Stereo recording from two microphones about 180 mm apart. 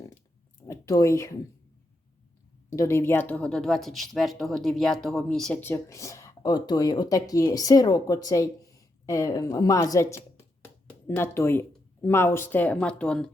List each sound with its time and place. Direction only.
0.7 s speech: 20° left (ahead or behind)
2.7 s speech: 15° left (ahead or behind)
5.6 s speech: 15° left (ahead or behind)